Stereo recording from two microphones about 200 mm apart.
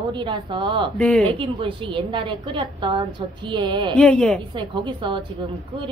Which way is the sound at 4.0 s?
5° left (ahead or behind).